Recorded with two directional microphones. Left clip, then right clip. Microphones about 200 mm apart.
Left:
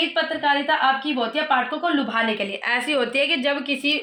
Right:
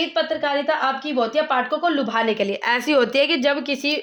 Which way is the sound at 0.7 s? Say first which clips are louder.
Left 1 dB; 55° right (ahead or behind).